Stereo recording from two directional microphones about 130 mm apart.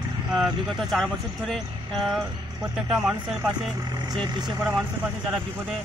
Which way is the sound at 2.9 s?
15° right (ahead or behind).